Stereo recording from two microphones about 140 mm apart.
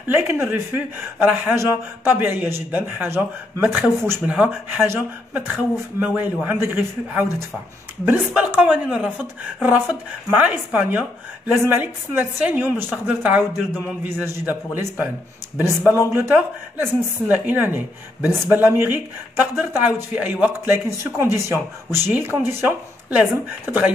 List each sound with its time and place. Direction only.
0.1 s speech: 15° right (ahead or behind)
16.1 s speech: 15° right (ahead or behind)